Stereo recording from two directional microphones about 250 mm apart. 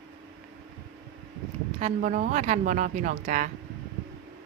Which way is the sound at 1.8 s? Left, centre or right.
Right.